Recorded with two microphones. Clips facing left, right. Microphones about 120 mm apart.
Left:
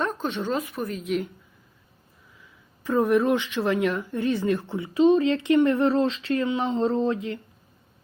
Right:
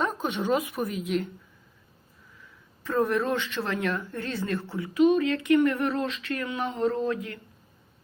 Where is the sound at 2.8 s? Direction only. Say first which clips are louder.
Left 4 dB; 15° left (ahead or behind).